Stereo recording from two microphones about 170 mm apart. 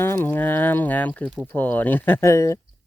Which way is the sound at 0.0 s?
15° left (ahead or behind).